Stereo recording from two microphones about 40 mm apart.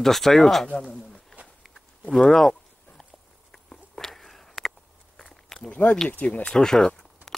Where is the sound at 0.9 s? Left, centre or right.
Centre.